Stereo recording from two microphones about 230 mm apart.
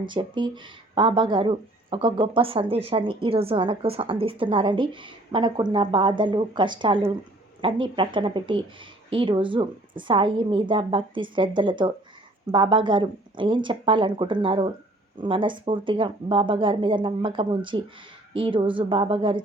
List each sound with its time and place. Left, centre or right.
0.1 s speech: right